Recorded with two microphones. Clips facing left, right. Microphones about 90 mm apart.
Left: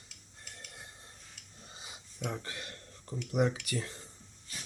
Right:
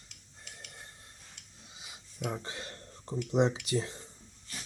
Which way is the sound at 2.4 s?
30° right (ahead or behind).